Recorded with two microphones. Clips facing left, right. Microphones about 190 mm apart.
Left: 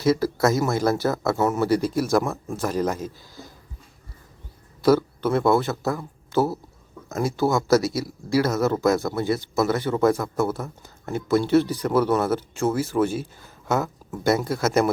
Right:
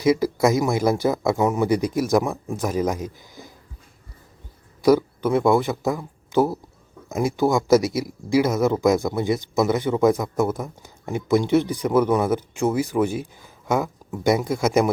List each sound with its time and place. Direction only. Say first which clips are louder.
0.0 s speech: right 2 dB; 15° right (ahead or behind)
4.8 s speech: right 1 dB; 15° right (ahead or behind)